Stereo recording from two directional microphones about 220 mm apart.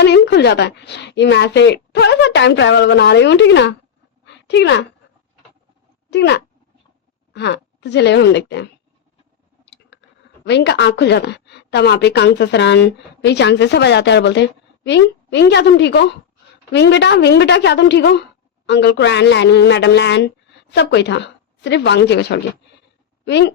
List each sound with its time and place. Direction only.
0.0 s a woman's voice: 50° left (ahead or behind)
4.3 s a sound: 50° left (ahead or behind)
6.1 s a woman's voice: 50° left (ahead or behind)
10.4 s a woman's voice: 50° left (ahead or behind)